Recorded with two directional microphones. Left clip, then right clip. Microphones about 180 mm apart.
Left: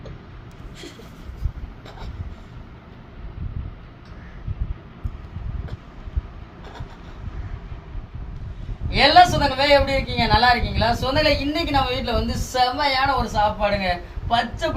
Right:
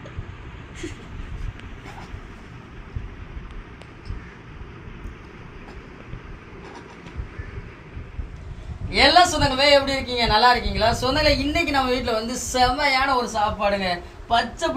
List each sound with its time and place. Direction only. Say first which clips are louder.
8.9 s a woman's voice: left 2 dB; 20° right (ahead or behind)